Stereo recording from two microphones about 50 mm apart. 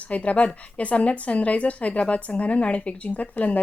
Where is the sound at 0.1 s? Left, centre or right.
Left.